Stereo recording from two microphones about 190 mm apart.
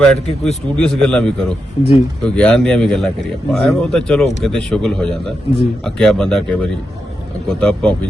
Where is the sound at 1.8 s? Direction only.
30° left (ahead or behind).